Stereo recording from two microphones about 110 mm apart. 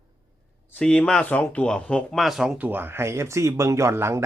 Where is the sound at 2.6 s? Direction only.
20° right (ahead or behind).